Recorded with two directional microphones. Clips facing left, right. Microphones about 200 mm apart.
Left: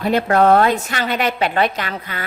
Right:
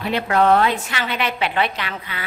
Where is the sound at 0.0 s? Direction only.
45° left (ahead or behind).